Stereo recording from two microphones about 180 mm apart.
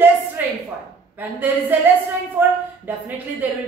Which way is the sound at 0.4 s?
10° right (ahead or behind).